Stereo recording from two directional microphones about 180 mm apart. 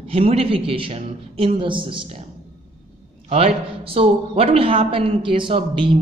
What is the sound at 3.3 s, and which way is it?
A man's voice, 35° right (ahead or behind).